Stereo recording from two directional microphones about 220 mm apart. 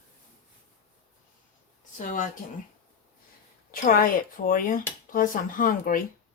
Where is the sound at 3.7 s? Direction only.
40° left (ahead or behind).